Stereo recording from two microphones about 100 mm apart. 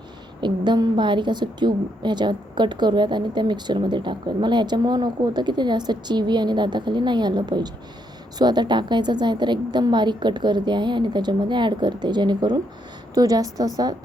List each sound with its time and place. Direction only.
0.4 s a woman's voice: 50° right (ahead or behind)